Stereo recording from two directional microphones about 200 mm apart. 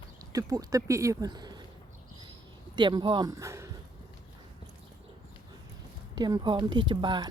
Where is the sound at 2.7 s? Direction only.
20° right (ahead or behind).